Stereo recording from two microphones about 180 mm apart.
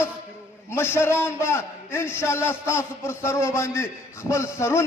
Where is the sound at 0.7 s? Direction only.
15° left (ahead or behind).